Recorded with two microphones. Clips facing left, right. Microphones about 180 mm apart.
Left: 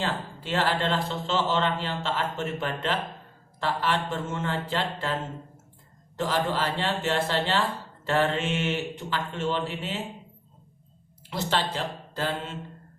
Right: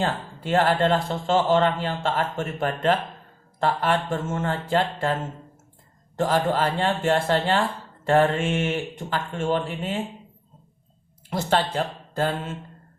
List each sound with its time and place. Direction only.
0.0 s a man's voice: 50° right (ahead or behind)
6.1 s a man's voice: 50° right (ahead or behind)
11.3 s a man's voice: 50° right (ahead or behind)